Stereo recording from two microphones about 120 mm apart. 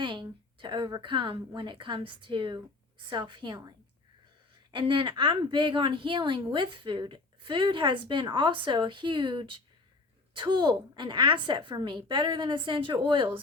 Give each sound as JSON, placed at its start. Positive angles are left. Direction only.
{"t": 0.0, "sound": "a woman's voice", "side_deg": -40}